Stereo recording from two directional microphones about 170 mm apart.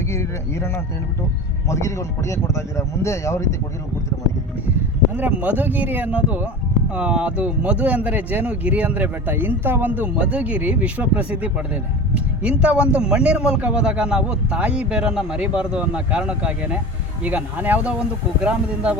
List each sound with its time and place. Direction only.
0.1 s speech: 15° left (ahead or behind)
5.1 s a man's voice: 10° right (ahead or behind)